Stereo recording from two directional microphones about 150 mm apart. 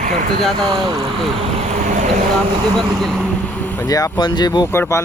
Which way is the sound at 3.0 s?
5° left (ahead or behind).